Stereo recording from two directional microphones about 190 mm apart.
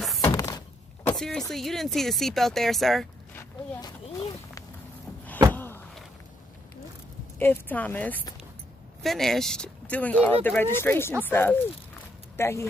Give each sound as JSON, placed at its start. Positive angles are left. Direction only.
{"t": 0.2, "sound": "thunk", "side_deg": 15}
{"t": 1.1, "sound": "speech", "side_deg": 0}
{"t": 3.3, "sound": "walk", "side_deg": 10}
{"t": 5.5, "sound": "a sound", "side_deg": 10}
{"t": 7.3, "sound": "speech", "side_deg": 10}